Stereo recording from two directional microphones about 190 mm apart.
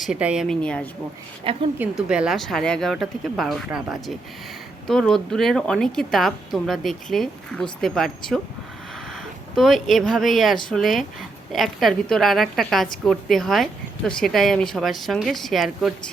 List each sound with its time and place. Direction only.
0.0 s a woman's voice: 5° right (ahead or behind)
1.5 s a woman's voice: 30° right (ahead or behind)
1.8 s a woman's voice: 5° right (ahead or behind)
9.6 s a woman's voice: centre (ahead or behind)